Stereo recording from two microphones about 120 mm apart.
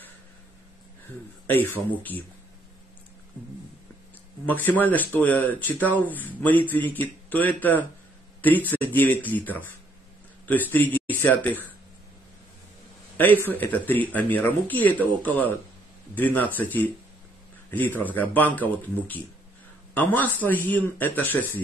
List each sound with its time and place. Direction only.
1.5 s speech: 15° left (ahead or behind)
4.5 s speech: 15° left (ahead or behind)
13.2 s speech: 15° left (ahead or behind)